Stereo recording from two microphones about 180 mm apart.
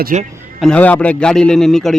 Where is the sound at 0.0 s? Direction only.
45° right (ahead or behind).